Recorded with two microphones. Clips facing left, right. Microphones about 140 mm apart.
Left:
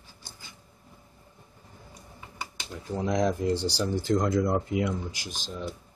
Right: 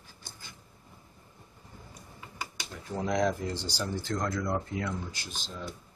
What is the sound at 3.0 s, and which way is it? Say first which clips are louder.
Speech: left 3 dB; 20° left (ahead or behind).